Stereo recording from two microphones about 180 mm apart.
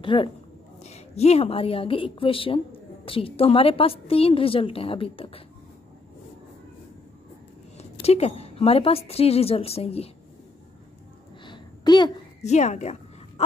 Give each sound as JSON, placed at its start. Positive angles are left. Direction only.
{"t": 0.0, "sound": "a woman's voice", "side_deg": 30}
{"t": 7.7, "sound": "a woman's voice", "side_deg": 35}
{"t": 11.4, "sound": "a sound", "side_deg": 25}
{"t": 12.4, "sound": "a woman's voice", "side_deg": 40}